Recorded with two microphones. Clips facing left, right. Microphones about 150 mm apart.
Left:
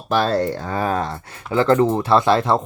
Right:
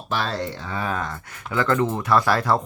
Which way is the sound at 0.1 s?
45° left (ahead or behind).